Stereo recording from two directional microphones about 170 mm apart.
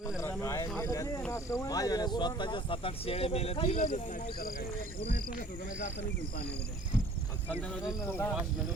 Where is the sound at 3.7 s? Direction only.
50° left (ahead or behind).